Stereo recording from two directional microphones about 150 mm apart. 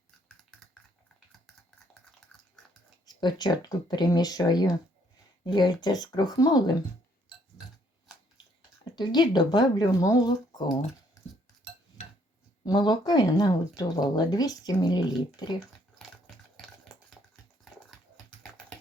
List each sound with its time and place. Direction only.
0.5 s typing: 5° left (ahead or behind)
3.2 s speech: 30° left (ahead or behind)
7.6 s a sound: 5° right (ahead or behind)
8.8 s speech: 30° left (ahead or behind)
12.6 s speech: 30° left (ahead or behind)